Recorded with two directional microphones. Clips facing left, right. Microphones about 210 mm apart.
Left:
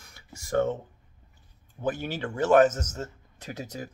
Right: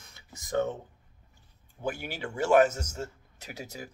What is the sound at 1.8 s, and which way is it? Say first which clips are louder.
A man's voice: left 4 dB; 10° right (ahead or behind).